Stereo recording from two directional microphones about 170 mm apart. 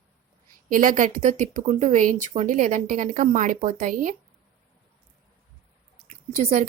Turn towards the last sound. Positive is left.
turn(degrees=-40)  # may be behind; listen again after turning